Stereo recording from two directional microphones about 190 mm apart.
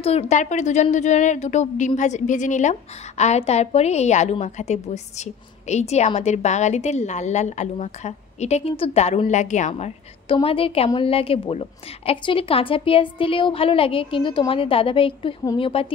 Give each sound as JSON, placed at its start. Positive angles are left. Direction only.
{"t": 0.0, "sound": "a woman's voice", "side_deg": 35}